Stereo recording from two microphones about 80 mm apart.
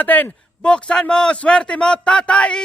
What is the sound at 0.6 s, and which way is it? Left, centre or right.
Speech, centre.